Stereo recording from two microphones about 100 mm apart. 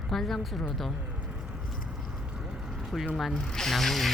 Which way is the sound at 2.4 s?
5° right (ahead or behind).